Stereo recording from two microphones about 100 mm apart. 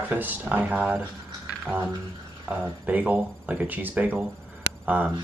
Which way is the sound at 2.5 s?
15° right (ahead or behind).